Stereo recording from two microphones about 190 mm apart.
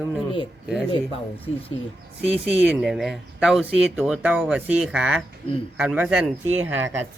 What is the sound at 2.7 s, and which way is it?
Speech, centre (ahead or behind).